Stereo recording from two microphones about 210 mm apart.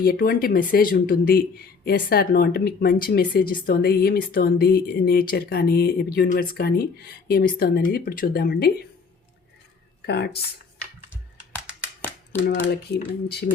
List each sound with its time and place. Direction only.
0.0 s speech: 45° left (ahead or behind)
12.4 s speech: 65° left (ahead or behind)